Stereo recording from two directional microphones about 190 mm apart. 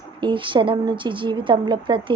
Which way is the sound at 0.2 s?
25° right (ahead or behind).